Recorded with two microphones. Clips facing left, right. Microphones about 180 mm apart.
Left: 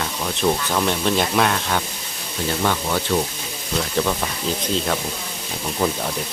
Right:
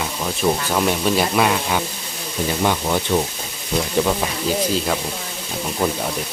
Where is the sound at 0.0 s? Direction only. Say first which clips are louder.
Right 1 dB; 10° right (ahead or behind).